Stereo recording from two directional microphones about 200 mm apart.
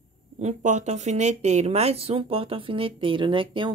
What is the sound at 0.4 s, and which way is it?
Speech, 35° right (ahead or behind).